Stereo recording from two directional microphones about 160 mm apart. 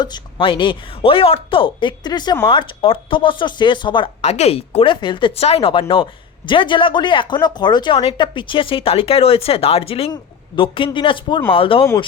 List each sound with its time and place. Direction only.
0.0 s speech: 30° left (ahead or behind)
4.2 s speech: 45° left (ahead or behind)